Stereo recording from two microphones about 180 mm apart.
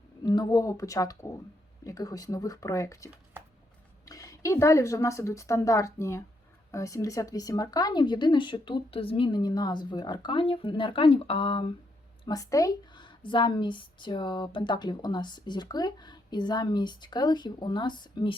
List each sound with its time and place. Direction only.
0.3 s a woman's voice: 20° left (ahead or behind)